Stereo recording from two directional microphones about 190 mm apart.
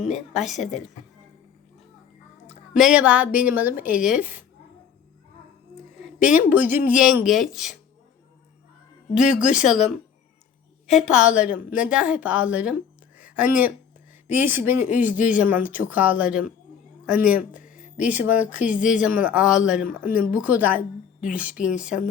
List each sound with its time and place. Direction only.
0.1 s speech: centre (ahead or behind)
2.5 s a woman's voice: centre (ahead or behind)
6.1 s speech: 5° right (ahead or behind)
9.1 s a woman's voice: 5° right (ahead or behind)
19.9 s speech: 45° left (ahead or behind)
20.3 s a woman's voice: 5° right (ahead or behind)